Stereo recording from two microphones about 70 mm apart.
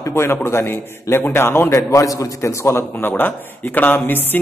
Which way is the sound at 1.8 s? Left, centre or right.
Left.